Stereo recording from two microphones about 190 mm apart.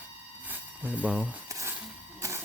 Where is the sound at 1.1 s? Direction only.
5° right (ahead or behind).